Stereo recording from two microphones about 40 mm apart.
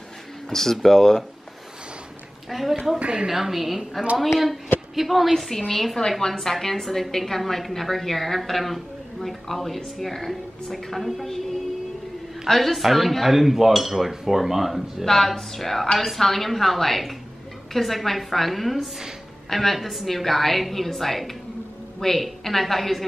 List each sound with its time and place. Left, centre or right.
0.5 s speech: centre
2.5 s a woman's voice: centre
3.0 s a woman's voice: right
3.3 s a woman's voice: centre
12.4 s a woman's voice: centre
15.0 s a woman's voice: centre